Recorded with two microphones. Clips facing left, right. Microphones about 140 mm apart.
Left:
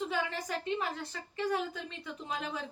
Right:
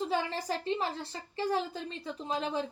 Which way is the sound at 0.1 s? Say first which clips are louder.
Right 3 dB; 30° right (ahead or behind).